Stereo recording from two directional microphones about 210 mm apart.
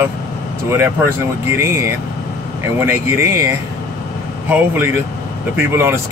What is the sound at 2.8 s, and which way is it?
Speech, 10° right (ahead or behind).